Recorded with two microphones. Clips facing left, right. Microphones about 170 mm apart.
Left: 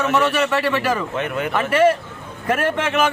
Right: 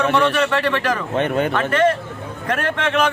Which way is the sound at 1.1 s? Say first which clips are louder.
Right 5 dB; 35° right (ahead or behind).